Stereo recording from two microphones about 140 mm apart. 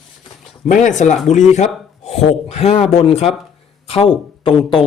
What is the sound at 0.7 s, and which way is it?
Speech, 65° left (ahead or behind).